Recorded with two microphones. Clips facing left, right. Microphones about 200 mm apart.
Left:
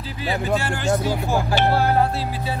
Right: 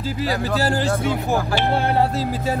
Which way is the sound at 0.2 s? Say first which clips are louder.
Right 1 dB; 35° right (ahead or behind).